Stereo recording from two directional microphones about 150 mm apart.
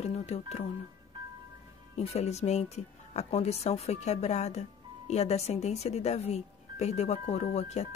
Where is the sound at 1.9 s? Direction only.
45° left (ahead or behind).